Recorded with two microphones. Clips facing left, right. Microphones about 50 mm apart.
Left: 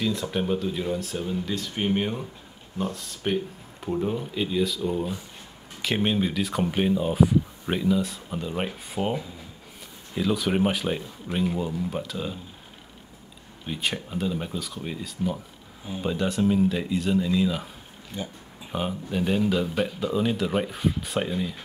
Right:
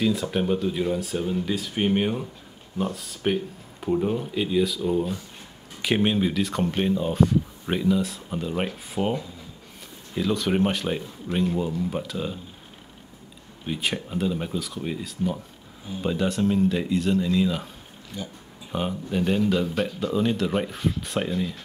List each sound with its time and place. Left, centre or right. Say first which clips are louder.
0.0 s speech: right 3 dB; centre
13.7 s speech: right 2 dB; centre
18.1 s speech: left 1 dB; left
18.7 s speech: right 1 dB; centre